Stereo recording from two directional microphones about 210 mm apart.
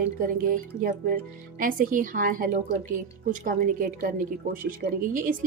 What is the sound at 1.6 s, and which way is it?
A woman's voice, 40° right (ahead or behind).